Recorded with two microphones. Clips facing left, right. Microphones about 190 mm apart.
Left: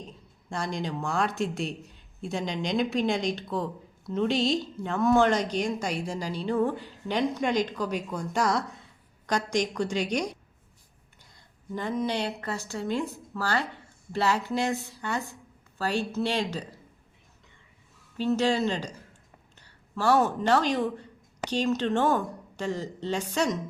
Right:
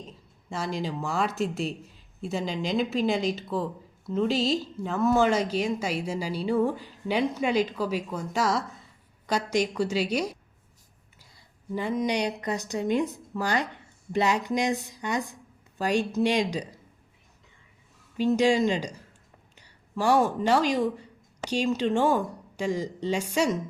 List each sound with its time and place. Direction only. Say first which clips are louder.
0.5 s speech: right 1 dB; 5° right (ahead or behind)
18.2 s speech: right 3 dB; 15° right (ahead or behind)